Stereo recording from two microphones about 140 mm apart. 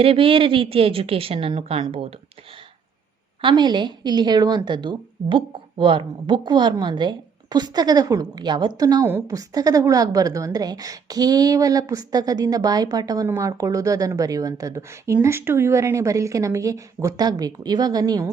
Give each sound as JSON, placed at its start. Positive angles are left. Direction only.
{"t": 0.0, "sound": "a woman's voice", "side_deg": -40}
{"t": 3.4, "sound": "a woman's voice", "side_deg": -30}